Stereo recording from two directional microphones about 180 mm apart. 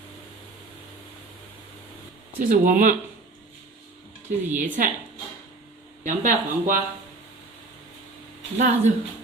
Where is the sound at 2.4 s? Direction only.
45° right (ahead or behind).